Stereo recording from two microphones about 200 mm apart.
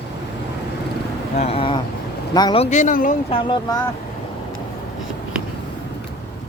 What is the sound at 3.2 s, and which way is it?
Speech, 25° left (ahead or behind).